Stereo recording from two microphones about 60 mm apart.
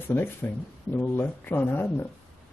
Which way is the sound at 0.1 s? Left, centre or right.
Left.